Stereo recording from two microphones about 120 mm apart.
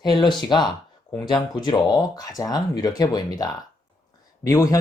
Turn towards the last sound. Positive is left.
turn(degrees=25)  # may be behind; listen again after turning